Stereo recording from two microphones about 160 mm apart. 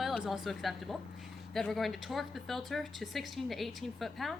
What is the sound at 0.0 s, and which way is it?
Speech, centre (ahead or behind).